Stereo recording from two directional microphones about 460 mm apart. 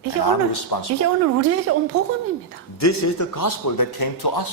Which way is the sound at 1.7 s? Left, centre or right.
Right.